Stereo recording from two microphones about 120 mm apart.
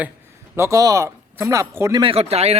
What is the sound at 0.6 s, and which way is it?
Speech, 25° right (ahead or behind).